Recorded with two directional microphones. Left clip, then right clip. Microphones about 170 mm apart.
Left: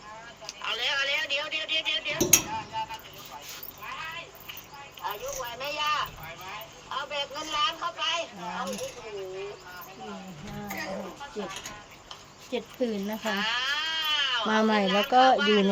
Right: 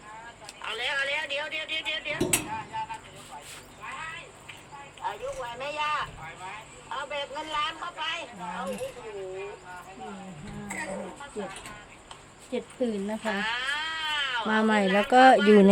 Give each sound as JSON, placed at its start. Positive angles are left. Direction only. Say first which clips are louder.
{"t": 0.4, "sound": "a sound", "louder": "left 2 dB", "side_deg": -20}
{"t": 3.8, "sound": "cat", "louder": "left 1 dB", "side_deg": -20}
{"t": 5.0, "sound": "a sound", "louder": "right 1 dB", "side_deg": -20}
{"t": 10.7, "sound": "music", "louder": "right 1 dB", "side_deg": -20}
{"t": 12.5, "sound": "speech", "louder": "even", "side_deg": 10}
{"t": 13.2, "sound": "sheep", "louder": "left 2 dB", "side_deg": -20}
{"t": 14.7, "sound": "speech", "louder": "right 1 dB", "side_deg": -20}
{"t": 15.1, "sound": "speech", "louder": "right 3 dB", "side_deg": -55}
{"t": 15.4, "sound": "speech", "louder": "right 4 dB", "side_deg": -20}